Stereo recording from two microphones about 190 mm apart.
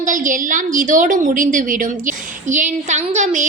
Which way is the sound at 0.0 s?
45° right (ahead or behind).